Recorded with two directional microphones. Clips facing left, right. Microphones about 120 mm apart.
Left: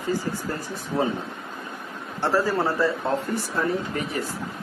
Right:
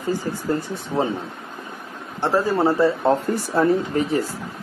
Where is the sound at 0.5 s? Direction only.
25° right (ahead or behind).